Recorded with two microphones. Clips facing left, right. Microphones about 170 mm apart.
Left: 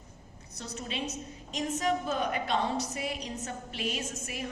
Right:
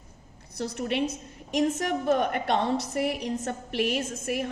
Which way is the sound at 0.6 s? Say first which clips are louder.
Right 9 dB; 65° right (ahead or behind).